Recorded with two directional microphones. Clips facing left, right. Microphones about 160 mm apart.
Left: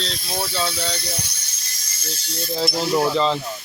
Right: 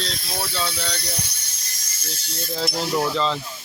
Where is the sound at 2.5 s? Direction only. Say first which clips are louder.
Left 3 dB; 10° left (ahead or behind).